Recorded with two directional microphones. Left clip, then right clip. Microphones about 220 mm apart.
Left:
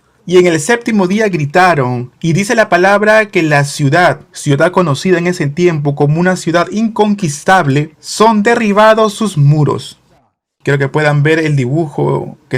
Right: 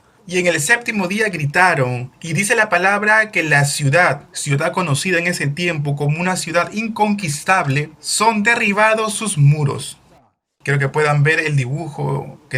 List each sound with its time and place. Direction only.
0.3 s speech: 35° left (ahead or behind)